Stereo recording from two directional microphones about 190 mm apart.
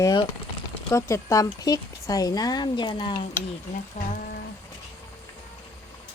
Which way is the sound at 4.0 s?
45° left (ahead or behind).